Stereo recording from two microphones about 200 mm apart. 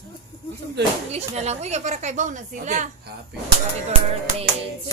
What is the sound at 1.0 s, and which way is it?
A woman's voice, 35° right (ahead or behind).